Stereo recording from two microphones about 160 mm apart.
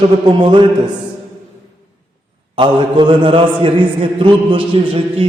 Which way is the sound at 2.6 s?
30° right (ahead or behind).